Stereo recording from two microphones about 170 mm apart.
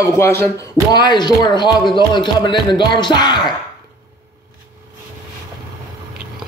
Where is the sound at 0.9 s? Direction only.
25° left (ahead or behind).